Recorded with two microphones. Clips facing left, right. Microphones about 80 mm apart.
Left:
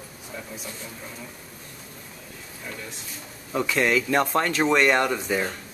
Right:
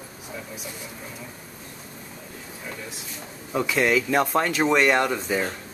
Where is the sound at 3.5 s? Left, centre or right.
Centre.